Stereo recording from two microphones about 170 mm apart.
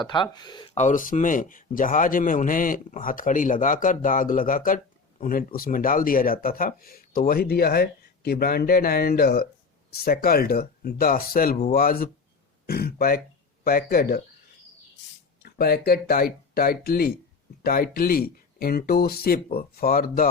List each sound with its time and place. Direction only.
0.0 s speech: 25° left (ahead or behind)
0.8 s a man's voice: 50° left (ahead or behind)
12.6 s throat clearing: 65° left (ahead or behind)
13.7 s speech: 65° left (ahead or behind)
15.4 s speech: 65° left (ahead or behind)